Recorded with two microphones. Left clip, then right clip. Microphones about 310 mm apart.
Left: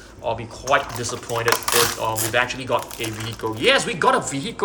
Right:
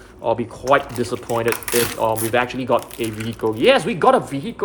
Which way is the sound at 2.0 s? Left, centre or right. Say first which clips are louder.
Right 2 dB; centre.